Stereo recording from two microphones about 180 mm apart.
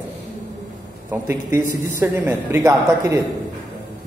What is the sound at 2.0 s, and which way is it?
A woman's voice, 10° right (ahead or behind).